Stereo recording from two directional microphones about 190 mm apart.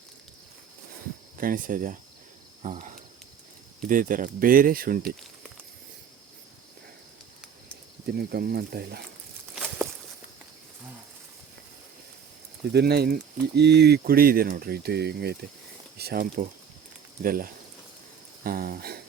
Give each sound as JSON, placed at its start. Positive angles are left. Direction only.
{"t": 1.4, "sound": "speech", "side_deg": -45}
{"t": 8.0, "sound": "speech", "side_deg": -55}
{"t": 12.7, "sound": "speech", "side_deg": -55}